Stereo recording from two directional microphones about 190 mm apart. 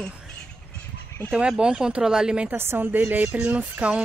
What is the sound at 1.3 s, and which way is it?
A woman's voice, 5° right (ahead or behind).